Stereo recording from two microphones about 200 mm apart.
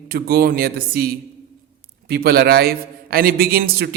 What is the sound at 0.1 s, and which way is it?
A man's voice, 50° right (ahead or behind).